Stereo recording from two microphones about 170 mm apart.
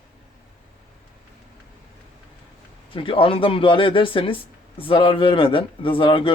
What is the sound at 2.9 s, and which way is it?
Speech, 30° left (ahead or behind).